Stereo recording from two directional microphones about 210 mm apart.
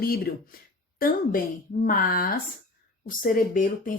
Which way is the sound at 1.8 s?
45° left (ahead or behind).